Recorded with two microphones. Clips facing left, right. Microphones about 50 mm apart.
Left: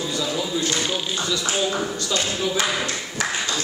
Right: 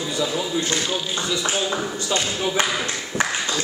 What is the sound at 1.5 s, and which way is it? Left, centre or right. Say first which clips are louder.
Speech: even; centre.